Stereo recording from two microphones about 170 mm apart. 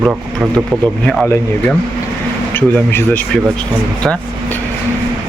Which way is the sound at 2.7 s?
10° left (ahead or behind).